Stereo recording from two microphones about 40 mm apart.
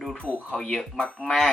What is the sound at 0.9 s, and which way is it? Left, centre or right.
Speech, left.